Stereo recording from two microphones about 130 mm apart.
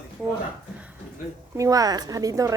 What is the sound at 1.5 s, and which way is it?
A woman's voice, 25° right (ahead or behind).